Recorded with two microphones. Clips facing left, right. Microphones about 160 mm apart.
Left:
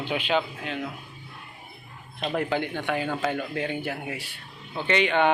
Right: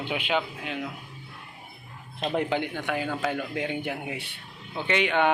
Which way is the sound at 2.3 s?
20° right (ahead or behind).